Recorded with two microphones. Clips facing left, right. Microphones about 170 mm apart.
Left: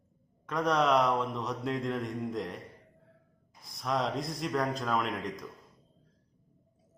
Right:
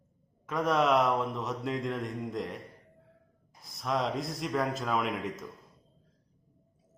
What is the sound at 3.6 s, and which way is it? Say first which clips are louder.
Mantra: even; centre (ahead or behind).